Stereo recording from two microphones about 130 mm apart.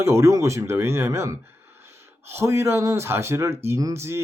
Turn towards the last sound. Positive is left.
turn(degrees=-20)  # may be behind; listen again after turning